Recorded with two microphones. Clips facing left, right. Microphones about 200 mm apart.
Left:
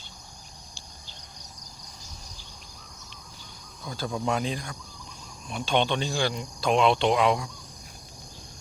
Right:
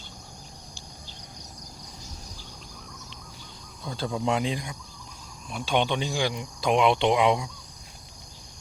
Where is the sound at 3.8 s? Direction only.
25° right (ahead or behind).